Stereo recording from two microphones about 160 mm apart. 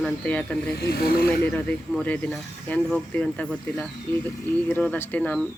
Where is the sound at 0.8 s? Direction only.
70° left (ahead or behind).